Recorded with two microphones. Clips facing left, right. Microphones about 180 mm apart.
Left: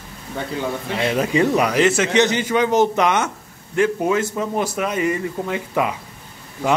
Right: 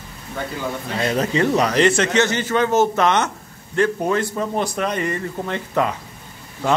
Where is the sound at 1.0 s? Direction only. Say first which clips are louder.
Left 1 dB; 10° left (ahead or behind).